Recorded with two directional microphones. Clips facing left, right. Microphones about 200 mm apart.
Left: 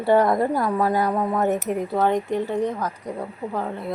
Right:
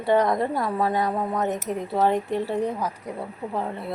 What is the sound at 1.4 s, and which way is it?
Speech, 60° left (ahead or behind).